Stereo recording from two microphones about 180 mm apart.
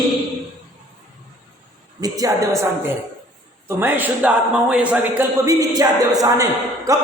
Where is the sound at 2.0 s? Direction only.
20° right (ahead or behind).